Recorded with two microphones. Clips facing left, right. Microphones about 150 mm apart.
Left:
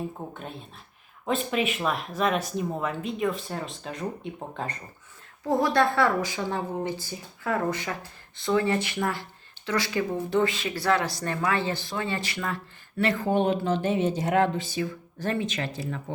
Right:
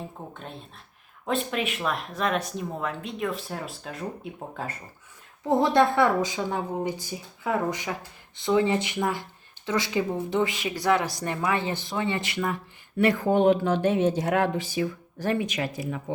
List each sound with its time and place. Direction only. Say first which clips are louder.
0.2 s speech: left 2 dB; 10° left (ahead or behind)
5.5 s speech: right 2 dB; 20° right (ahead or behind)